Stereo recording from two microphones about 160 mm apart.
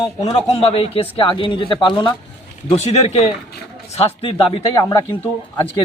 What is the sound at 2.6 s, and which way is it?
Speech, 40° left (ahead or behind).